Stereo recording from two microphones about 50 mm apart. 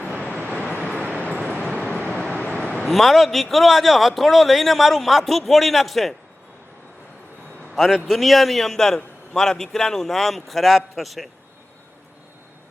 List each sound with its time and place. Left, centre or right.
1.0 s vehicle: left
2.8 s a man's voice: centre
7.8 s a man's voice: centre